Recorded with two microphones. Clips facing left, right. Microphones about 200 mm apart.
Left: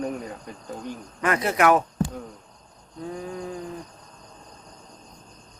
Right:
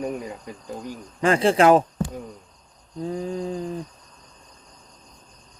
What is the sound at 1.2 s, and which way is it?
Speech, 30° right (ahead or behind).